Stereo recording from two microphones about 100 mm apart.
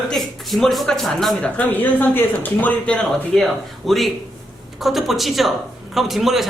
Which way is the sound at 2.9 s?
5° left (ahead or behind).